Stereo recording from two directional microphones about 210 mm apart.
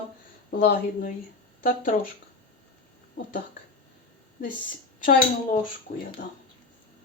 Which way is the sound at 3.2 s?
40° left (ahead or behind).